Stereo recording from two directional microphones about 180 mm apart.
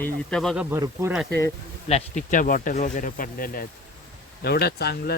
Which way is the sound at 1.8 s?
35° left (ahead or behind).